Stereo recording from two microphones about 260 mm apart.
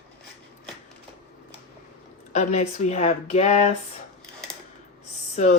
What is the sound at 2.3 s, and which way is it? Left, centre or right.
Speech, left.